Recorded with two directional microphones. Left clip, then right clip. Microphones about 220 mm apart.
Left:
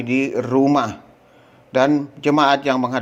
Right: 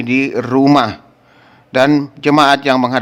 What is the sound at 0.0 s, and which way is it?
A man's voice, 20° right (ahead or behind).